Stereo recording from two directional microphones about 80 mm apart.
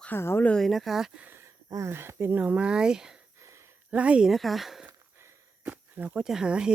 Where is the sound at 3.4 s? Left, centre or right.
Right.